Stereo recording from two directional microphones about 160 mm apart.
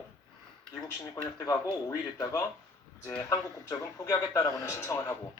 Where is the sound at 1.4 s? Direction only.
20° left (ahead or behind).